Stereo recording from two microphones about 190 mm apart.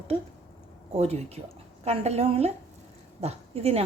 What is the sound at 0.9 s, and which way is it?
Speech, 35° right (ahead or behind).